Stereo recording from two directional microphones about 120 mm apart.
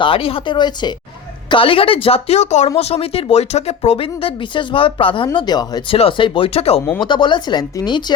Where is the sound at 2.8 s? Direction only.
55° left (ahead or behind).